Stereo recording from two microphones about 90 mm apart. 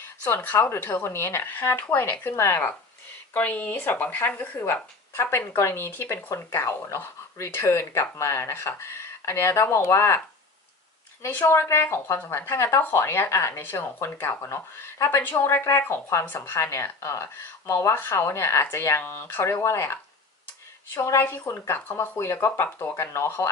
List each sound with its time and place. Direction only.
0.0 s speech: 20° left (ahead or behind)
11.2 s speech: 25° left (ahead or behind)